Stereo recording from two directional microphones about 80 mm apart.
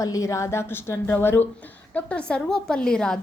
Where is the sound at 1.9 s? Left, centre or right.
Centre.